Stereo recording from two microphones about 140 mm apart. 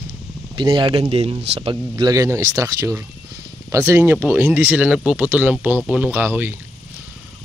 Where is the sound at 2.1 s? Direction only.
20° right (ahead or behind).